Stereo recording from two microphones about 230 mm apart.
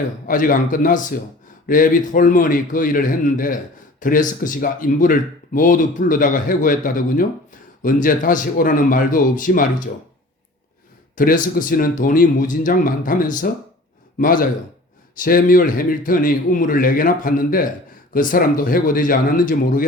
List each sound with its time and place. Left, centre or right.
0.3 s a man's voice: left
11.1 s a man's voice: left